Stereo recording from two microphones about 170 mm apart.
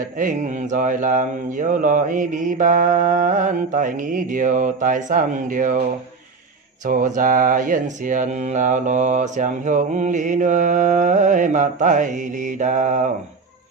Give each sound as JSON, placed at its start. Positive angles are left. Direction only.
{"t": 0.2, "sound": "mantra", "side_deg": -50}